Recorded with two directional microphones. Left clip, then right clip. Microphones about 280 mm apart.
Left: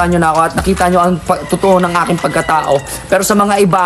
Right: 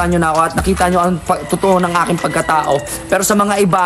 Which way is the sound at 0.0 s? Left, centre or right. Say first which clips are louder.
Left 3 dB; centre.